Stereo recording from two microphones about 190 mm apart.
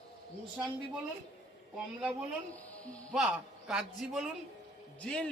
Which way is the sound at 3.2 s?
5° right (ahead or behind).